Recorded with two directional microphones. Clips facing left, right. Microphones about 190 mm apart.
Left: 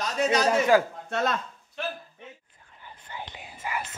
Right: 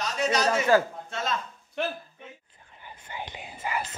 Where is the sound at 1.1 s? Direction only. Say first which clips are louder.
Left 4 dB; 60° left (ahead or behind).